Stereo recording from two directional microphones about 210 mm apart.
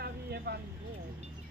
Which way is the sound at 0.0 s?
50° right (ahead or behind).